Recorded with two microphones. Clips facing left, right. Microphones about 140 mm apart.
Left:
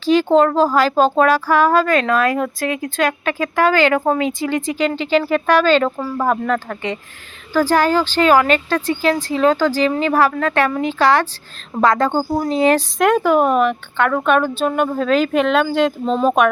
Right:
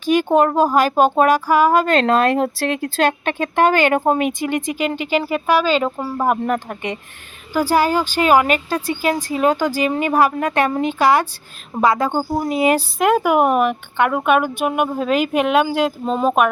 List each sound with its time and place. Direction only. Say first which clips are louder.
0.0 s a woman's voice: left 2 dB; 15° right (ahead or behind)
1.9 s a woman's voice: right 1 dB; 30° right (ahead or behind)
10.9 s a woman's voice: left 1 dB; 10° right (ahead or behind)